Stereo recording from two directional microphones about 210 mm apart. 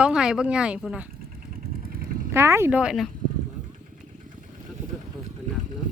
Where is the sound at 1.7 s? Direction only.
45° right (ahead or behind).